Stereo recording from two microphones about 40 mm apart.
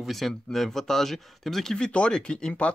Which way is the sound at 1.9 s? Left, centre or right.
Left.